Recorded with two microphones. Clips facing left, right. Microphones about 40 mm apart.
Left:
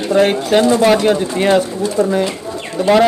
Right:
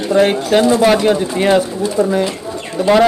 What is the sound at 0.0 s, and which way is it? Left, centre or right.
A man's voice, centre.